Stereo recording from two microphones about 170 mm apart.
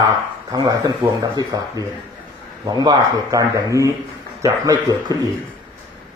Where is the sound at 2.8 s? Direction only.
20° right (ahead or behind).